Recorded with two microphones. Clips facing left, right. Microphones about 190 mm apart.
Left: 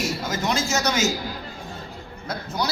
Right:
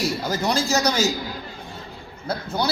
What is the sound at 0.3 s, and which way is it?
Speech, 35° right (ahead or behind).